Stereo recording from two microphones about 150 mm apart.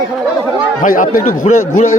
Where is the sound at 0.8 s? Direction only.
65° left (ahead or behind).